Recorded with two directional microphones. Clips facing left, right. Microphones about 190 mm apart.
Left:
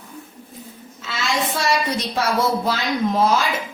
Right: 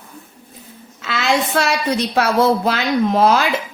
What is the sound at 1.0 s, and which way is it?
A woman's voice, 65° right (ahead or behind).